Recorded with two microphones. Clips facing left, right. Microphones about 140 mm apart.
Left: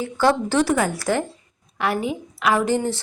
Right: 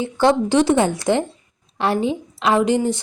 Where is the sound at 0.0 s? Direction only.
20° right (ahead or behind).